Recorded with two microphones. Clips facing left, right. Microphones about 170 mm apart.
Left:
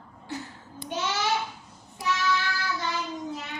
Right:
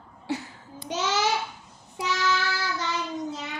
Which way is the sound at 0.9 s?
90° right.